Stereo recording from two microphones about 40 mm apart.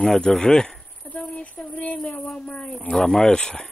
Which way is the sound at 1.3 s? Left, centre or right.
Left.